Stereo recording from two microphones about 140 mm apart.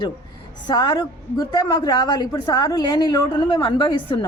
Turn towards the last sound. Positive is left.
turn(degrees=35)  # may be behind; listen again after turning